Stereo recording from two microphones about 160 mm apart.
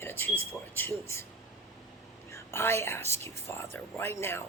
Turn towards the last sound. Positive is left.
turn(degrees=15)  # may be behind; listen again after turning